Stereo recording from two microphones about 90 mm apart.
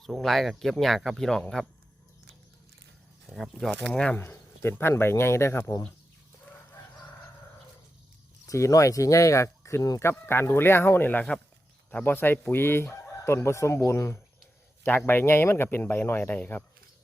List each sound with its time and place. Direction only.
0.0 s speech: centre (ahead or behind)
3.2 s speech: centre (ahead or behind)
4.2 s chicken: 25° left (ahead or behind)
8.4 s speech: 35° left (ahead or behind); by 11.3 s 15° left (ahead or behind)
11.9 s chicken: 20° left (ahead or behind)
14.8 s chicken: 25° left (ahead or behind)